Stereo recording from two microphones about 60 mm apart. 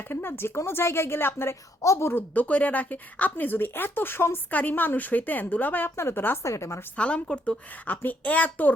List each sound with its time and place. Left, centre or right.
0.1 s speech: left
1.8 s speech: left
2.3 s speech: left
4.5 s a woman's voice: left
6.0 s speech: left
6.9 s a woman's voice: left